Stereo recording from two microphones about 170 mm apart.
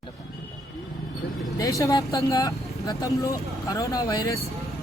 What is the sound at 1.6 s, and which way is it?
Speech, 20° left (ahead or behind).